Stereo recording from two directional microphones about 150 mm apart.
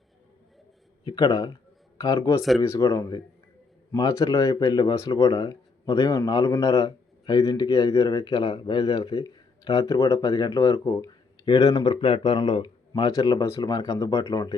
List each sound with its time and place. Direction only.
1.0 s speech: 25° left (ahead or behind)